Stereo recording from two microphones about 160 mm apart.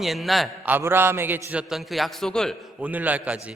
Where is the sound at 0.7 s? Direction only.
15° right (ahead or behind); by 2.6 s 5° left (ahead or behind).